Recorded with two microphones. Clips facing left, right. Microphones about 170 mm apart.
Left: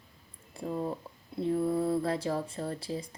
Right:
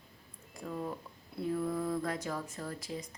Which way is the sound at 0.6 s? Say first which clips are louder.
Left 5 dB; 30° left (ahead or behind).